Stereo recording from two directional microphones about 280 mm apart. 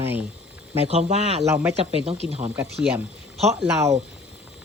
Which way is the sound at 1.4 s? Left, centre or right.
Centre.